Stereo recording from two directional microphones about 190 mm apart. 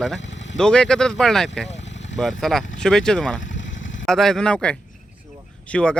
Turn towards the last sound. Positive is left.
turn(degrees=5)  # may be behind; listen again after turning